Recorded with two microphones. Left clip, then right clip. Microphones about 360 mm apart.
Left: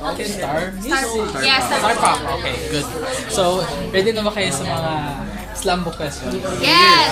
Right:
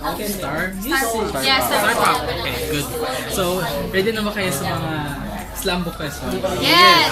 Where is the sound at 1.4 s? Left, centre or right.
Centre.